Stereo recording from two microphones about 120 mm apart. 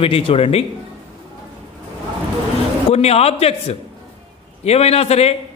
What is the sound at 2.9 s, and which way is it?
A man's voice, 60° left (ahead or behind).